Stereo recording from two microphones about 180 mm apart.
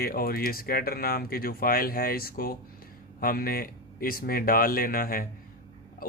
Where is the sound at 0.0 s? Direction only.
55° left (ahead or behind).